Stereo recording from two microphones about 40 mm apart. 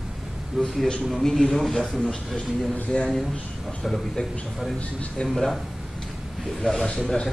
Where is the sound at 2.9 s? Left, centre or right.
Left.